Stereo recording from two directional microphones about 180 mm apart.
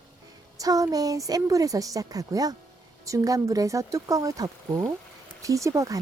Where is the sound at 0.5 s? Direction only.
20° right (ahead or behind).